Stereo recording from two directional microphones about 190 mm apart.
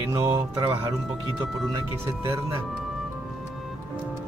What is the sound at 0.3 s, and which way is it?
Speech, 25° right (ahead or behind).